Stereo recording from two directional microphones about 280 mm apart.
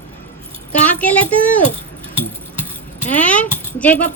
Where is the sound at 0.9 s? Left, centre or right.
Centre.